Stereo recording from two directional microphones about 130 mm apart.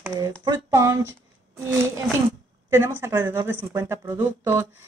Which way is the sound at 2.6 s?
20° right (ahead or behind).